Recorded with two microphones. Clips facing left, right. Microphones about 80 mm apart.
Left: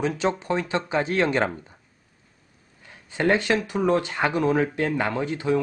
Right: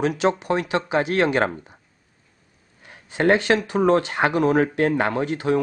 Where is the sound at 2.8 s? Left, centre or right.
Right.